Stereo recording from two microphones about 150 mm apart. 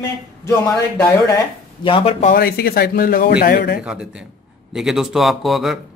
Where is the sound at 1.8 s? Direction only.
35° left (ahead or behind).